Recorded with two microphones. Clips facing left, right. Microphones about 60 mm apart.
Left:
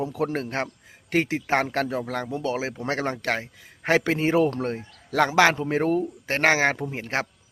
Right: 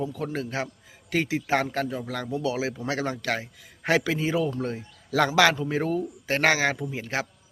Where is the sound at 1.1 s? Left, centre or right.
Left.